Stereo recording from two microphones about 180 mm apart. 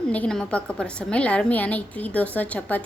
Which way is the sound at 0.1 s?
5° left (ahead or behind).